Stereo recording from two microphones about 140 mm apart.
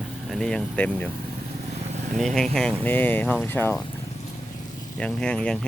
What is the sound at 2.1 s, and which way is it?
Speech, centre (ahead or behind).